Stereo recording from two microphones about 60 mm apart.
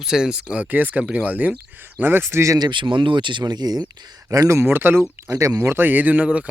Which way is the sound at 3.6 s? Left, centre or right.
Right.